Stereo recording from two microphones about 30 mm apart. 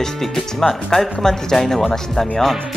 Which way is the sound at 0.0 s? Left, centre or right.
Centre.